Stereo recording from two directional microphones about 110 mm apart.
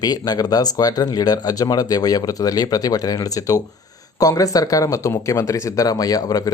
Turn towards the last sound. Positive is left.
turn(degrees=35)  # may be behind; listen again after turning